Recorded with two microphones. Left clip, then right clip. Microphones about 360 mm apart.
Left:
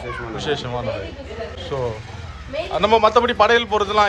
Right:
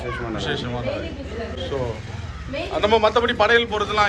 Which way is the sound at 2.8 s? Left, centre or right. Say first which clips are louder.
Left 3 dB; centre.